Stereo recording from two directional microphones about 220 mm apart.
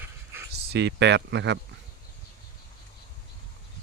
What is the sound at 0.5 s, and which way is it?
Speech, 50° right (ahead or behind).